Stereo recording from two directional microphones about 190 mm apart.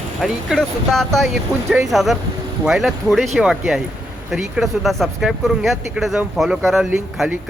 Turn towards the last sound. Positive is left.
turn(degrees=-5)  # may be behind; listen again after turning